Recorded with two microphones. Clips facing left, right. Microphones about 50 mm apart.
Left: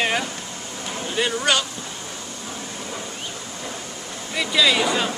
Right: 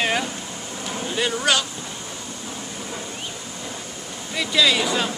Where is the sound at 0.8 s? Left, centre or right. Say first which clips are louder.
Even; centre.